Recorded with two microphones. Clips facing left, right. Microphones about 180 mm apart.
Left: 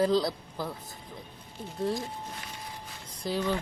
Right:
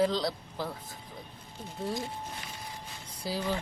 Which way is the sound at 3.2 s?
5° right (ahead or behind).